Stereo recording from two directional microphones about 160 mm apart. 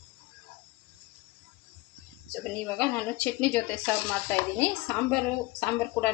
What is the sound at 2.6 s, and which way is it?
Speech, 10° left (ahead or behind).